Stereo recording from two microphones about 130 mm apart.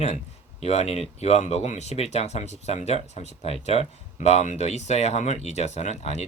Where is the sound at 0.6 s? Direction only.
55° left (ahead or behind).